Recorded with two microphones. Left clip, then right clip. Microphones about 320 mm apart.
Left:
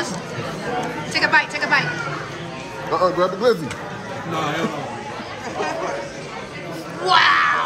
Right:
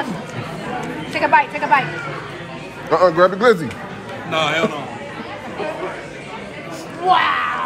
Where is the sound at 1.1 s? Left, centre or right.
Centre.